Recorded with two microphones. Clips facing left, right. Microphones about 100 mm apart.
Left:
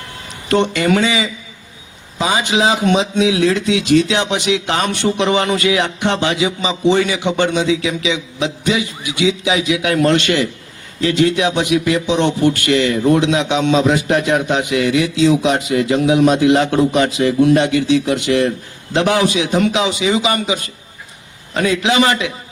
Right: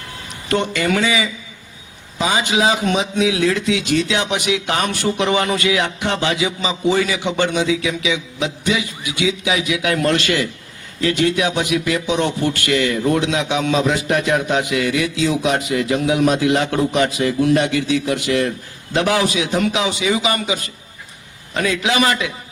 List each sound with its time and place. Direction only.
0.5 s a man's voice: 25° left (ahead or behind)